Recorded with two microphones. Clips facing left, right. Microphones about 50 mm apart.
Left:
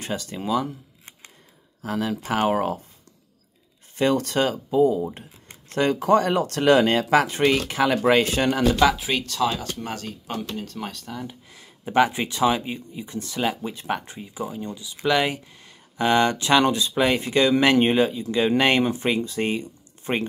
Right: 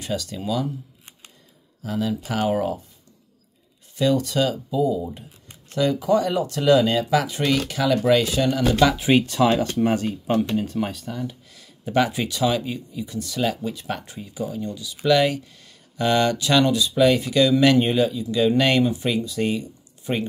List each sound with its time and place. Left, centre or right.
0.0 s speech: left
1.8 s speech: left
3.9 s speech: left
7.4 s speech: left
8.8 s speech: centre
9.1 s speech: right
9.8 s speech: right
10.5 s speech: centre
11.5 s speech: left